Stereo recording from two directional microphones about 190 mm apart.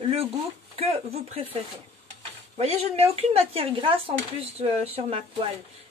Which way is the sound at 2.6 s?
30° right (ahead or behind).